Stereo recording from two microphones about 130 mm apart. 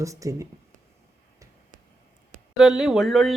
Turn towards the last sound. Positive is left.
turn(degrees=0)  # may be behind; listen again after turning